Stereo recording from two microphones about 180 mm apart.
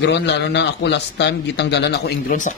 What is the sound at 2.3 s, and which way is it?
Speech, 45° left (ahead or behind).